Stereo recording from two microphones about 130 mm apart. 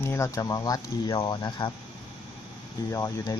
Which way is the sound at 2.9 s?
25° left (ahead or behind).